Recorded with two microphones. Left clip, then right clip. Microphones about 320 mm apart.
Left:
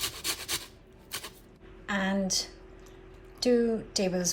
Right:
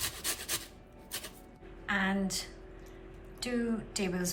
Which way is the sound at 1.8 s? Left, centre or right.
Centre.